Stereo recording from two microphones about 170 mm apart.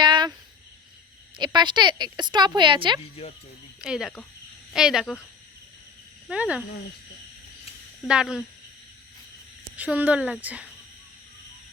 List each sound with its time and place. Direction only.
0.0 s a sound: 25° right (ahead or behind)
1.4 s a woman's voice: 25° right (ahead or behind)
3.8 s speech: 5° right (ahead or behind)
6.2 s speech: 5° right (ahead or behind)
8.0 s speech: 5° right (ahead or behind)
9.7 s speech: 10° right (ahead or behind)